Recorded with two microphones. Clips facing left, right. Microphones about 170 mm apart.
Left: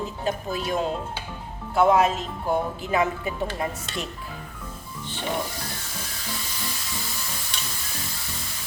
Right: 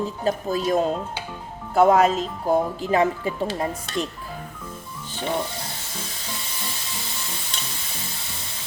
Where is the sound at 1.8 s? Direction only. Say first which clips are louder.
Right 3 dB; 40° right (ahead or behind).